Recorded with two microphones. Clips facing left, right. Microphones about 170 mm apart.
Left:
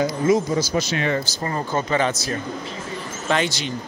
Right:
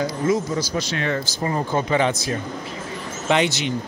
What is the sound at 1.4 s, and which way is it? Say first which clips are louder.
Speech: right 2 dB; 10° right (ahead or behind).